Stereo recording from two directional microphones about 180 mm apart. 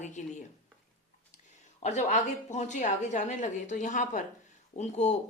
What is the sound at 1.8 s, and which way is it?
Speech, 40° left (ahead or behind).